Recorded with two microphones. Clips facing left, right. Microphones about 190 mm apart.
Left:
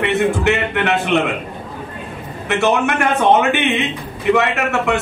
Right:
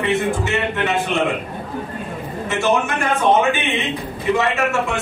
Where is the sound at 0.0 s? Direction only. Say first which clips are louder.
Left 3 dB; 70° left (ahead or behind).